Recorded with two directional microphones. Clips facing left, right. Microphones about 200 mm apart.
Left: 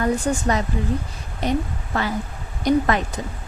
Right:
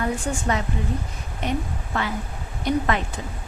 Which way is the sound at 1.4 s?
35° left (ahead or behind).